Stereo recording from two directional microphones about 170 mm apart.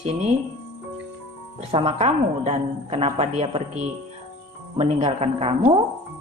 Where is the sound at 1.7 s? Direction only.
35° right (ahead or behind).